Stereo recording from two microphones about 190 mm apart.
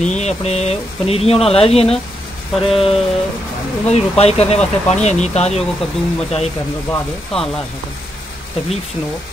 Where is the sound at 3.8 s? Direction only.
35° left (ahead or behind).